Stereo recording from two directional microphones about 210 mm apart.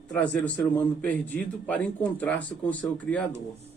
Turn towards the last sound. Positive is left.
turn(degrees=5)  # may be behind; listen again after turning